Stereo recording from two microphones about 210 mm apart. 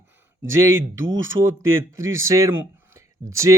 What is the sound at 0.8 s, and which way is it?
Speech, 65° right (ahead or behind).